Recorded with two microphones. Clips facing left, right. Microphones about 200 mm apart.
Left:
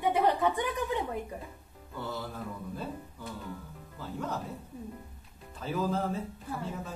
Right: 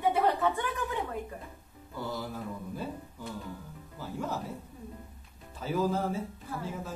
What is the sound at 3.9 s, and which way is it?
Speech, 10° right (ahead or behind).